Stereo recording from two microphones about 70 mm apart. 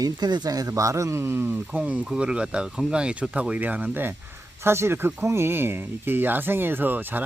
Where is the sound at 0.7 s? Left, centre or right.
Right.